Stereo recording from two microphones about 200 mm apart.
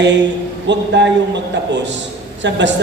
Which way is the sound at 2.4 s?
65° right (ahead or behind).